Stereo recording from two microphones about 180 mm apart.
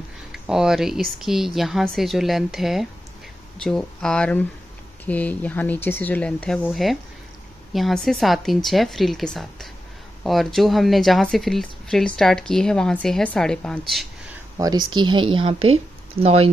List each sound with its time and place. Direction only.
0.3 s speech: 5° right (ahead or behind)
14.6 s speech: 20° right (ahead or behind)